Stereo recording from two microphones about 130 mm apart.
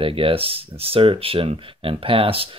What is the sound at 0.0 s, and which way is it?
Speech, 45° right (ahead or behind).